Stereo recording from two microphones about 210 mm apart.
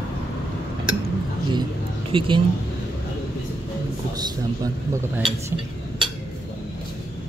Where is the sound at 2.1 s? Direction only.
25° right (ahead or behind).